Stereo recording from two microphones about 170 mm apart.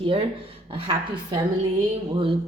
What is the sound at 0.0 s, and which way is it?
Speech, 30° right (ahead or behind).